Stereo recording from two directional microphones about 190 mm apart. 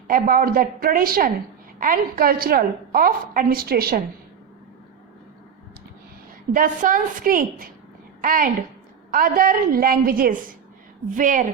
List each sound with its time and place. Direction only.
0.1 s a woman's voice: 50° right (ahead or behind)
6.5 s a woman's voice: 45° right (ahead or behind)